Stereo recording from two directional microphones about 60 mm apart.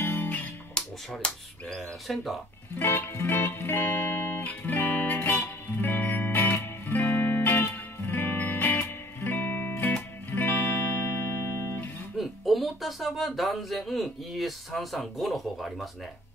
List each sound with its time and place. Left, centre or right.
0.0 s music: left
0.7 s speech: centre
1.8 s speech: centre
2.8 s music: left
12.2 s speech: centre